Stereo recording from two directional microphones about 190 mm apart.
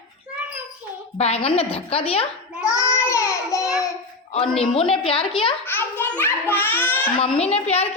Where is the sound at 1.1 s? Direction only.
35° left (ahead or behind).